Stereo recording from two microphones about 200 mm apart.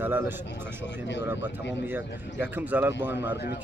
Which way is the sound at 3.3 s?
55° left (ahead or behind).